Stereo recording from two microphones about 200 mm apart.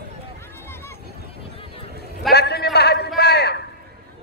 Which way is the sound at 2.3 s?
55° left (ahead or behind).